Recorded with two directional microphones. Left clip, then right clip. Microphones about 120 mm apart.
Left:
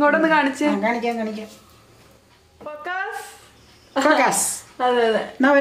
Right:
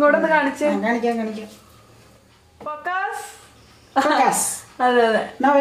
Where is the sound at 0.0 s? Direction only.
35° left (ahead or behind).